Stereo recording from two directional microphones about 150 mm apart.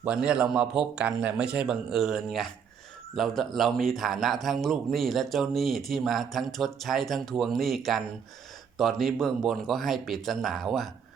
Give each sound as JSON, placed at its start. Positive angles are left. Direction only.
{"t": 0.0, "sound": "a man's voice", "side_deg": -5}